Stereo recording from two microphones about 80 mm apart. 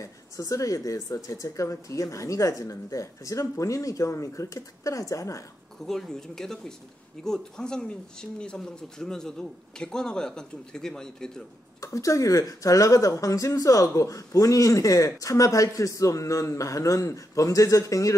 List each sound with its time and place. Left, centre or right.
0.0 s speech: left
5.9 s speech: centre
11.8 s speech: left